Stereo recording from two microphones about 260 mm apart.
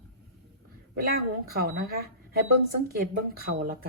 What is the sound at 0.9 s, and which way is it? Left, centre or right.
Speech, right.